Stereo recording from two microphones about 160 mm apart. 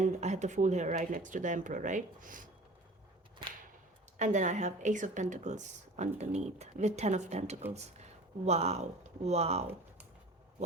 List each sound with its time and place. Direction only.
0.0 s speech: 45° right (ahead or behind)
4.2 s speech: 50° right (ahead or behind)